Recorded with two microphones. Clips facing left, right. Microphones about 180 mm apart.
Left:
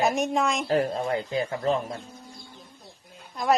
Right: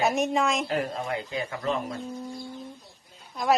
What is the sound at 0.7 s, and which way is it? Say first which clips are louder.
Speech: left 4 dB; 35° left (ahead or behind).